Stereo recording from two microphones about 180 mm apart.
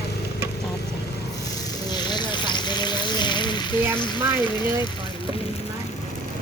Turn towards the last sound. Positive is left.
turn(degrees=25)  # may be behind; listen again after turning